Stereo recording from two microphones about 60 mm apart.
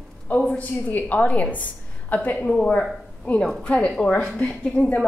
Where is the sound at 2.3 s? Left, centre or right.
Centre.